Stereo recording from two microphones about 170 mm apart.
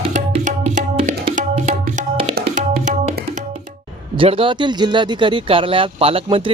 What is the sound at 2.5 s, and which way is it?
Music, 50° right (ahead or behind).